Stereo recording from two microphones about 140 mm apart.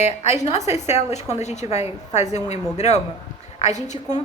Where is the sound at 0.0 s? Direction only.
50° left (ahead or behind).